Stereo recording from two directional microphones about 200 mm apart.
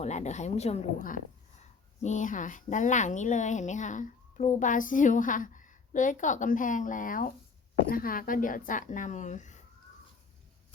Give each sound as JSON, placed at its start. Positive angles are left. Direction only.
{"t": 0.0, "sound": "a woman's voice", "side_deg": 35}